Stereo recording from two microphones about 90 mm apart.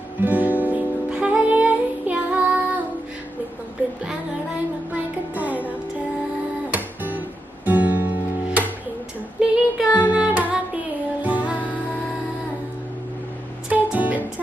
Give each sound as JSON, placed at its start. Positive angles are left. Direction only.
{"t": 0.2, "sound": "music", "side_deg": -20}
{"t": 6.7, "sound": "music", "side_deg": -20}
{"t": 9.4, "sound": "a sound", "side_deg": -10}
{"t": 10.1, "sound": "music", "side_deg": -15}
{"t": 11.5, "sound": "music", "side_deg": 15}
{"t": 13.7, "sound": "music", "side_deg": -15}